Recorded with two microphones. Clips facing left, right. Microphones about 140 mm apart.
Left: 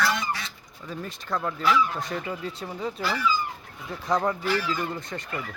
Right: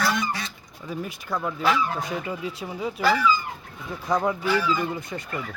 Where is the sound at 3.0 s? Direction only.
90° right.